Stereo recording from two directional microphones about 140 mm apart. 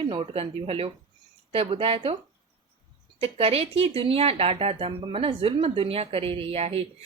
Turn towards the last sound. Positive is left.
turn(degrees=-45)  # may be behind; listen again after turning